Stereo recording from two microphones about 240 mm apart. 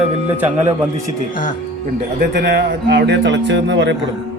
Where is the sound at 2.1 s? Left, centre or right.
Right.